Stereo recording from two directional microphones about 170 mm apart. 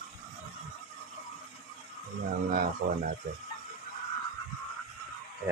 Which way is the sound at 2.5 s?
60° right (ahead or behind).